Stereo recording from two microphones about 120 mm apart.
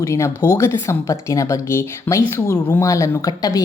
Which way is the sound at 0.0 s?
25° left (ahead or behind).